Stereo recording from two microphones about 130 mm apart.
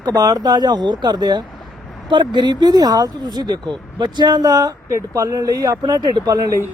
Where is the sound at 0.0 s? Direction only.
30° right (ahead or behind).